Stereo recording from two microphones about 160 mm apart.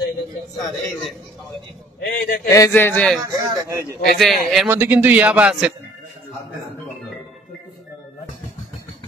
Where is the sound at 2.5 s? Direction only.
15° left (ahead or behind); by 4.6 s centre (ahead or behind).